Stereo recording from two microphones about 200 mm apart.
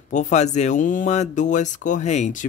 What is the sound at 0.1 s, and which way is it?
Speech, 35° left (ahead or behind).